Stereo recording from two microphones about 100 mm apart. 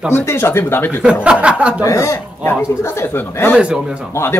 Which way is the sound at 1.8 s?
30° left (ahead or behind).